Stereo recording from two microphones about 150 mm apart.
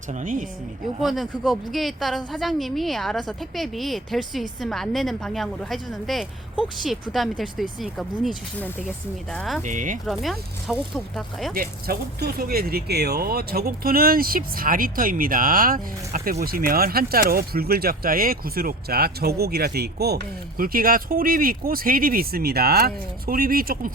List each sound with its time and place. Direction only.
0.1 s speech: 60° right (ahead or behind)
1.0 s a woman's voice: centre (ahead or behind)
9.3 s a woman's voice: 5° left (ahead or behind)
9.6 s speech: 60° right (ahead or behind)
10.1 s a woman's voice: centre (ahead or behind)
11.5 s speech: 80° right